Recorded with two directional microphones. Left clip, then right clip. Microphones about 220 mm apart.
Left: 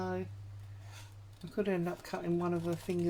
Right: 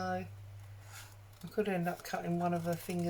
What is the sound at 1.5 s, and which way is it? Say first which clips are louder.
Speech: even; 40° left (ahead or behind).